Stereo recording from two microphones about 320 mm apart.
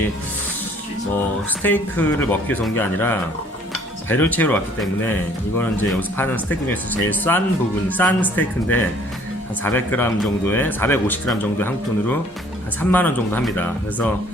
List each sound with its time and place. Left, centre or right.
1.6 s a man's voice: centre